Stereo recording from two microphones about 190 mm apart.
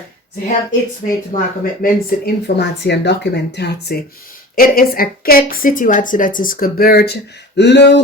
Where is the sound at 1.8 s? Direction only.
55° left (ahead or behind).